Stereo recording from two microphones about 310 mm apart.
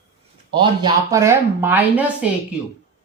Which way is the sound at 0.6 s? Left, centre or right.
Centre.